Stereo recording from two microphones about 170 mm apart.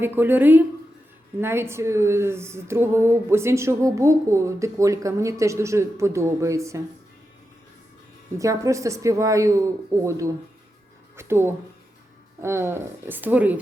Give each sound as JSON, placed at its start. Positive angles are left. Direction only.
{"t": 0.0, "sound": "speech", "side_deg": -10}
{"t": 8.4, "sound": "a woman's voice", "side_deg": -20}